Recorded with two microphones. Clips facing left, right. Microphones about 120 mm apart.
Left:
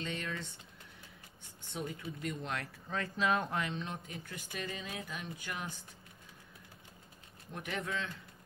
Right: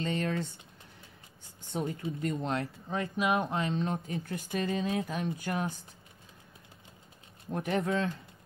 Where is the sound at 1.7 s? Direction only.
40° right (ahead or behind).